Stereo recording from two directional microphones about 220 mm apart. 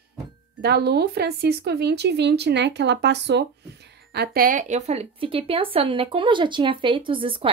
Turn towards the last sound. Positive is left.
turn(degrees=-25)  # may be behind; listen again after turning